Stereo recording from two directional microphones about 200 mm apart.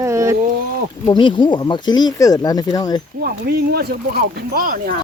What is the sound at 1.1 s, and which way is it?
Speech, 25° left (ahead or behind).